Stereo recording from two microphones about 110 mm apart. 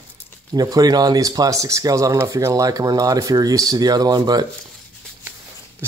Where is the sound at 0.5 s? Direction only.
35° right (ahead or behind).